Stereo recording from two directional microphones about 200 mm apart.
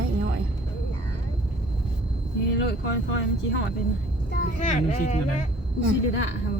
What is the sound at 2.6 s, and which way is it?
Speech, 65° left (ahead or behind).